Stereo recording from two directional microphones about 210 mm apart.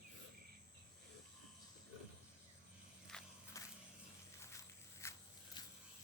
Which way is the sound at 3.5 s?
15° left (ahead or behind).